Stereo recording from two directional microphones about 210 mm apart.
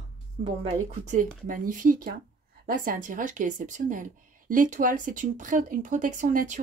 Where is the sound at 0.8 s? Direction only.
35° right (ahead or behind).